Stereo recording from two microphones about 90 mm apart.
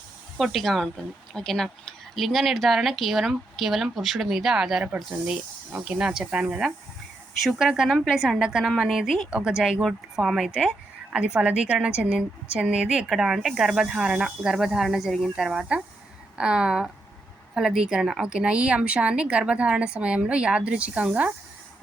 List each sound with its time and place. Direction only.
0.3 s a woman's voice: centre (ahead or behind)